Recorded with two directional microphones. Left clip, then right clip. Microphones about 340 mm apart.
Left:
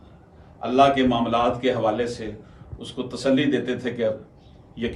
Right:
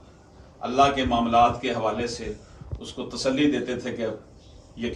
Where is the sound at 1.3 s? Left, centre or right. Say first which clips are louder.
Right 1 dB; centre.